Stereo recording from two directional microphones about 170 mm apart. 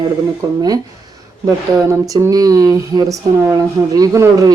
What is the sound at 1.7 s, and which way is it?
Speech, 15° right (ahead or behind).